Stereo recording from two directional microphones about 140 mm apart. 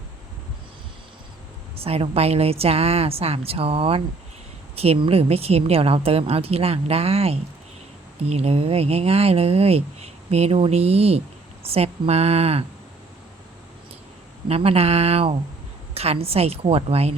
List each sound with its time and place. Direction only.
1.7 s speech: 45° right (ahead or behind)
14.4 s speech: 45° right (ahead or behind)